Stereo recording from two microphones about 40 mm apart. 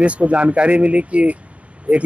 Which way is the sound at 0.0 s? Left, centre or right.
Right.